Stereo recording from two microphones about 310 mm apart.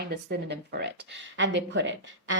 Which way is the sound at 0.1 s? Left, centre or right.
Right.